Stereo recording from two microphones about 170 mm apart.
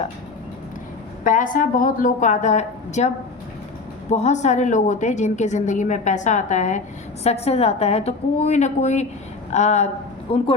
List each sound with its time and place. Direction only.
1.2 s a woman's voice: 50° left (ahead or behind)
4.1 s a woman's voice: 45° left (ahead or behind)